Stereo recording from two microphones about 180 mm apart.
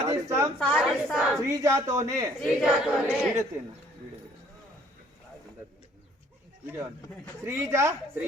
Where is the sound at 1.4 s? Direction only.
15° right (ahead or behind).